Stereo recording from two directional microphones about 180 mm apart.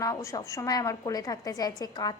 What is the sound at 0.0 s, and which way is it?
A woman's voice, 15° left (ahead or behind).